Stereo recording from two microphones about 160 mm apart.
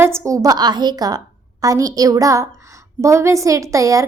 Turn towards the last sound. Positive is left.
turn(degrees=-20)  # may be behind; listen again after turning